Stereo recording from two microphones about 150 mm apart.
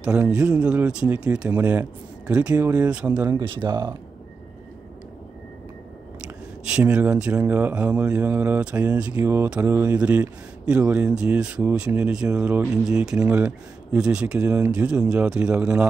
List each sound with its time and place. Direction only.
0.0 s speech: 5° right (ahead or behind)
3.3 s speech: 30° right (ahead or behind)
6.7 s speech: 10° right (ahead or behind)